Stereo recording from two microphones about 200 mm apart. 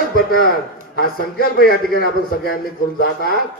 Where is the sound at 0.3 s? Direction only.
45° left (ahead or behind).